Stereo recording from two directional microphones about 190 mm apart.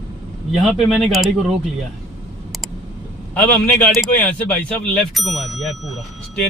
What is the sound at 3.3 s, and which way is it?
A man's voice, 5° left (ahead or behind).